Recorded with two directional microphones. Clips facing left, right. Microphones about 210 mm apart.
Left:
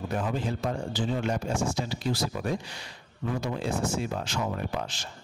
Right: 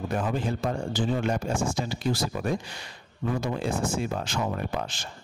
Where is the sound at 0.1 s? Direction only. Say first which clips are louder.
Right 2 dB; 50° right (ahead or behind).